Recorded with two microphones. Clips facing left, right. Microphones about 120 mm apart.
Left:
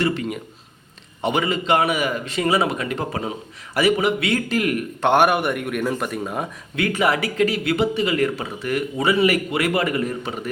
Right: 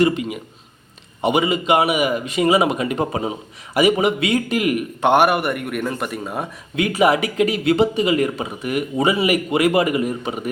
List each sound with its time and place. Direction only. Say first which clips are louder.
0.0 s a man's voice: right 5 dB; 15° right (ahead or behind)
6.7 s a man's voice: right 4 dB; 20° right (ahead or behind)